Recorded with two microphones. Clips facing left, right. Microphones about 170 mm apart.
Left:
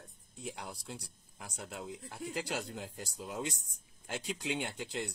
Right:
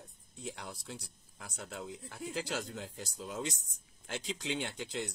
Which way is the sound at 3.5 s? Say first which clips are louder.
Right 1 dB; 90° right.